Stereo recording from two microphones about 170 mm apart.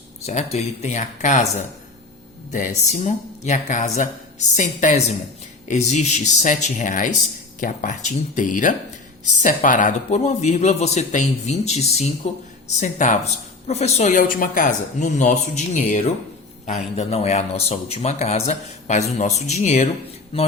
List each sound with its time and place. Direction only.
0.3 s a man's voice: 40° left (ahead or behind)